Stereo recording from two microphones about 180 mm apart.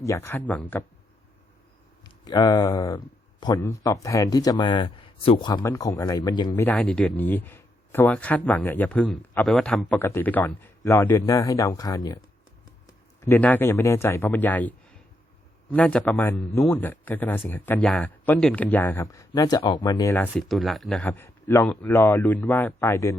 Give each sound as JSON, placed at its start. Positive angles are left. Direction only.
{"t": 0.0, "sound": "speech", "side_deg": 15}
{"t": 2.0, "sound": "speech", "side_deg": 25}
{"t": 6.6, "sound": "speech", "side_deg": 10}
{"t": 13.2, "sound": "speech", "side_deg": 10}
{"t": 20.5, "sound": "speech", "side_deg": 0}